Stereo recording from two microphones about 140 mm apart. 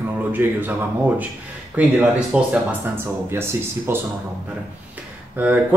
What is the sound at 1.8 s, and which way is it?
Speech, 10° right (ahead or behind).